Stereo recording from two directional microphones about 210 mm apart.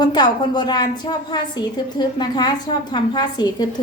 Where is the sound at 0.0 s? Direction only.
20° left (ahead or behind).